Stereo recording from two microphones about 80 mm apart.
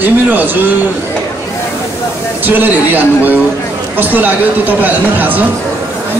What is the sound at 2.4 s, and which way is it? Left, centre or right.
Speech, right.